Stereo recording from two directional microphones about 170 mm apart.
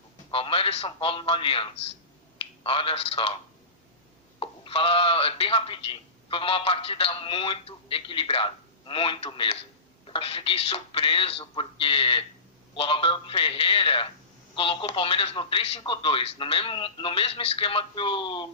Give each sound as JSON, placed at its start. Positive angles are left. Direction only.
{"t": 0.3, "sound": "a man's voice", "side_deg": 30}
{"t": 4.4, "sound": "speech", "side_deg": 35}